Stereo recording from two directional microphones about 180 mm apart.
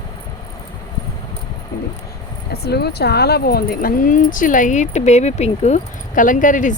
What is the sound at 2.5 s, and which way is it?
Speech, 65° left (ahead or behind).